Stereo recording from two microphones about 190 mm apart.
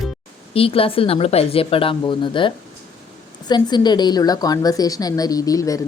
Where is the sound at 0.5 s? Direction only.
30° left (ahead or behind).